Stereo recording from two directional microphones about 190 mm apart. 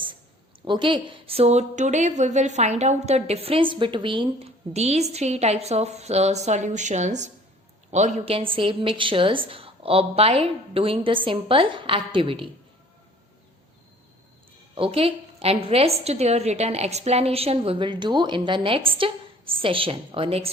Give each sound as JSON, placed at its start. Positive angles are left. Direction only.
{"t": 0.6, "sound": "a woman's voice", "side_deg": -25}
{"t": 14.8, "sound": "a woman's voice", "side_deg": -30}